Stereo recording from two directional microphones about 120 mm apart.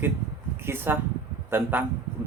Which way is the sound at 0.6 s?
20° right (ahead or behind).